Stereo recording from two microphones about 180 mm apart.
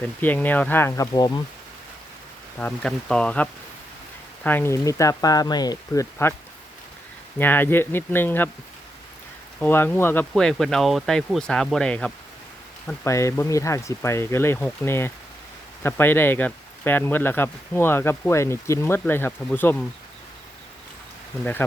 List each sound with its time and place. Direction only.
0.0 s speech: 10° left (ahead or behind)
2.6 s speech: 5° left (ahead or behind)
7.3 s speech: 10° left (ahead or behind)
9.6 s speech: 10° left (ahead or behind)